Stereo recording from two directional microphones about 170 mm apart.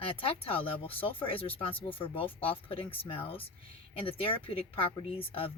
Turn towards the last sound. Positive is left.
turn(degrees=35)  # may be behind; listen again after turning